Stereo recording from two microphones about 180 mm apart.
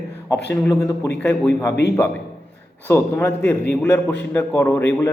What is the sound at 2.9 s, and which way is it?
A man's voice, 15° left (ahead or behind).